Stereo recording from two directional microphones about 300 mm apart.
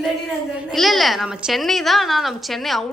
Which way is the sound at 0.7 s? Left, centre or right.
Centre.